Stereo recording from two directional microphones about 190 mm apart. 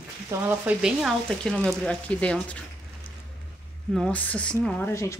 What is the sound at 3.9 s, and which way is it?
Speech, 5° left (ahead or behind).